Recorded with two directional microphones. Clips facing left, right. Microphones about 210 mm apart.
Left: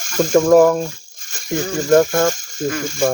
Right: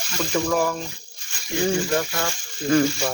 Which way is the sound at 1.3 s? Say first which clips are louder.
Left 5 dB; 45° left (ahead or behind).